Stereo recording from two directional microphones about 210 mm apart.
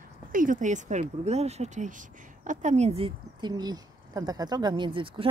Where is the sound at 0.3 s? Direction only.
40° right (ahead or behind).